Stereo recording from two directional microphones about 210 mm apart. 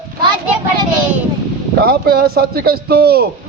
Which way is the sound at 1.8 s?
45° right (ahead or behind).